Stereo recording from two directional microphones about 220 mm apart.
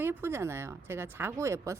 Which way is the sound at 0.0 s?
10° right (ahead or behind).